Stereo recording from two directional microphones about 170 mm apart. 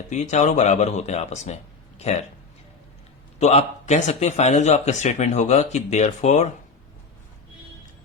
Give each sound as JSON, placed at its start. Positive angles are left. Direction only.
{"t": 0.1, "sound": "speech", "side_deg": 45}
{"t": 3.3, "sound": "a man's voice", "side_deg": 40}